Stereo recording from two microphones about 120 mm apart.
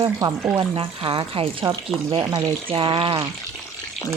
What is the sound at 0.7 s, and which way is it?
Speech, 50° right (ahead or behind).